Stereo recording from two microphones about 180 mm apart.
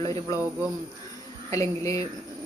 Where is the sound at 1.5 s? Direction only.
15° left (ahead or behind).